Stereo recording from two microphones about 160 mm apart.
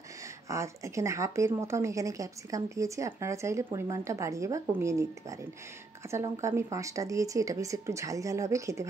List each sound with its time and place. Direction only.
0.5 s a woman's voice: 20° right (ahead or behind)